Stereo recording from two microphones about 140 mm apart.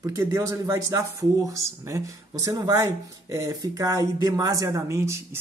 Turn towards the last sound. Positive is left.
turn(degrees=-20)  # may be behind; listen again after turning